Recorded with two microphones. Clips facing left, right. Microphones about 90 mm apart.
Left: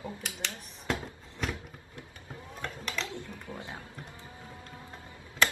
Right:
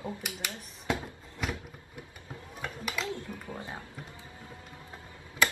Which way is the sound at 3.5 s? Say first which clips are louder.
Right 1 dB; 20° right (ahead or behind).